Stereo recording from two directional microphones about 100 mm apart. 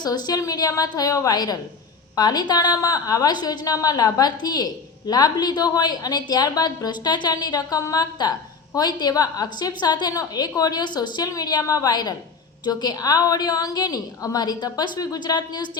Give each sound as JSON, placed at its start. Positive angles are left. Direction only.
{"t": 0.0, "sound": "a woman's voice", "side_deg": 45}